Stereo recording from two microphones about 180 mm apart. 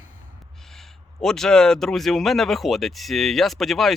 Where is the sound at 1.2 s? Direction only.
5° left (ahead or behind).